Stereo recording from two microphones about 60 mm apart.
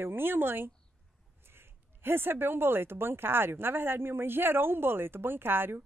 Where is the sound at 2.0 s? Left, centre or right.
Right.